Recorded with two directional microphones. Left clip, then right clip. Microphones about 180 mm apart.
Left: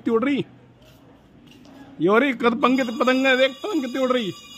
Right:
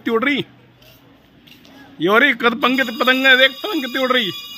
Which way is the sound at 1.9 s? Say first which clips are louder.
Right 5 dB; 5° left (ahead or behind).